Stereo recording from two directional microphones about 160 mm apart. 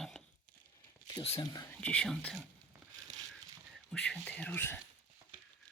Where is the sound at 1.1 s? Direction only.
25° left (ahead or behind).